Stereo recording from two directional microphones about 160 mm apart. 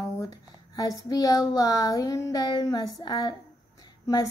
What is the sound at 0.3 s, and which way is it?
Speech, 20° left (ahead or behind).